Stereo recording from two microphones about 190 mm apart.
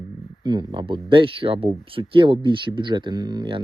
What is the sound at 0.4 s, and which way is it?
Speech, 25° right (ahead or behind).